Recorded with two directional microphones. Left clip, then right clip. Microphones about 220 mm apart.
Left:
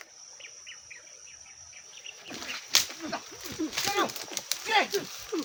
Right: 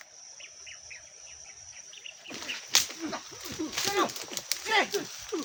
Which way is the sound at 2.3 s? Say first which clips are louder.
Left 1 dB; 15° left (ahead or behind).